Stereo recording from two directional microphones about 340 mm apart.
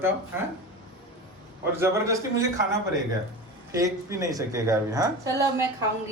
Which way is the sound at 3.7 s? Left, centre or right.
Centre.